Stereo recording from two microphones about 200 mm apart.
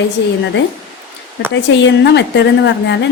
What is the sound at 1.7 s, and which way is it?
A woman's voice, 60° left (ahead or behind).